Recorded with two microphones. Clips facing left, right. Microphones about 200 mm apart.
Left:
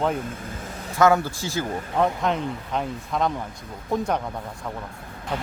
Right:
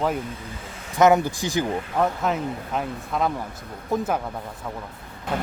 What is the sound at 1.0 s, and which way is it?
Speech, 20° right (ahead or behind).